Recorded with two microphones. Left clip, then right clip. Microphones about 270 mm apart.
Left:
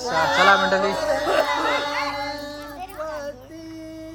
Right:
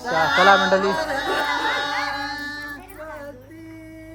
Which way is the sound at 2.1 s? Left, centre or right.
Centre.